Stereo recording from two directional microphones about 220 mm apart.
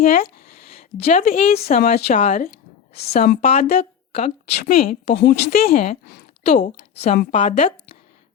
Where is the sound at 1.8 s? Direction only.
45° left (ahead or behind).